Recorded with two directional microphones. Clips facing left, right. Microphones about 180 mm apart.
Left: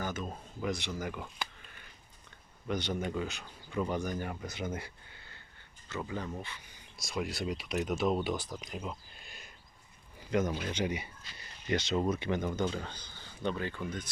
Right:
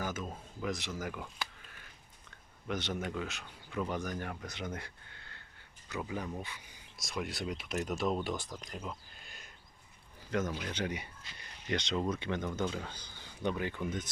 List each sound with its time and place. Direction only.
0.0 s speech: 5° right (ahead or behind)
2.6 s speech: centre (ahead or behind)
5.9 s speech: 10° right (ahead or behind)
7.0 s speech: centre (ahead or behind)
12.5 s speech: centre (ahead or behind); by 14.1 s 20° right (ahead or behind)